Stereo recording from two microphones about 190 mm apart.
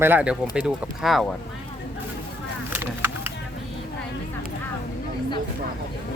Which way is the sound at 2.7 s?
10° right (ahead or behind).